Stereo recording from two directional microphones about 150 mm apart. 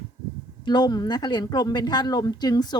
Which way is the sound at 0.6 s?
30° left (ahead or behind).